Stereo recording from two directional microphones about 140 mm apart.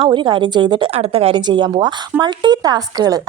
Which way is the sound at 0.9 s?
45° right (ahead or behind).